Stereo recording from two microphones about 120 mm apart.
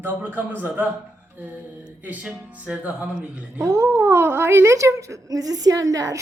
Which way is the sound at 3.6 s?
25° right (ahead or behind).